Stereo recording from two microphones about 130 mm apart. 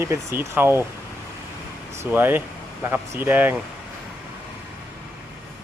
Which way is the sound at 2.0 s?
15° right (ahead or behind).